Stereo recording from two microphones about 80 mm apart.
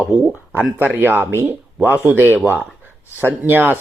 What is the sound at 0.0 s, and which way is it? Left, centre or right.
Speech, centre.